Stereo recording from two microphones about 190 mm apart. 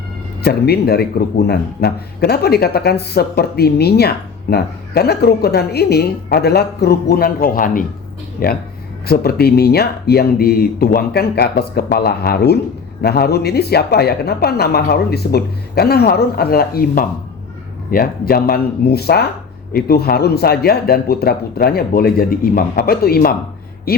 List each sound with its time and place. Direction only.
0.4 s a man's voice: 55° left (ahead or behind)